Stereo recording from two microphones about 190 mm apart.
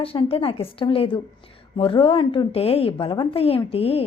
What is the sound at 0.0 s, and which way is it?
A woman's voice, 30° left (ahead or behind).